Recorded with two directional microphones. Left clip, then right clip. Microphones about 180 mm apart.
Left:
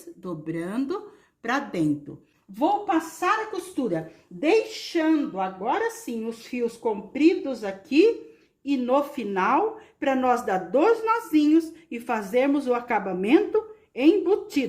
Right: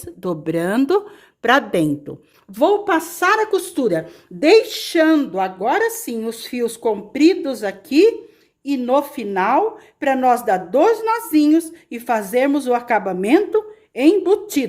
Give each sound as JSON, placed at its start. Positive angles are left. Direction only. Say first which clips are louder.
{"t": 0.2, "sound": "a woman's voice", "louder": "right 11 dB", "side_deg": -60}
{"t": 2.6, "sound": "a woman's voice", "louder": "right 7 dB", "side_deg": -80}